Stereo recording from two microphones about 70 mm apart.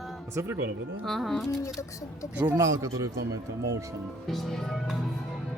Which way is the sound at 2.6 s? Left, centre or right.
Right.